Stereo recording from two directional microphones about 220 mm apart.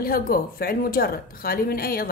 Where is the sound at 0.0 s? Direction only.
40° left (ahead or behind).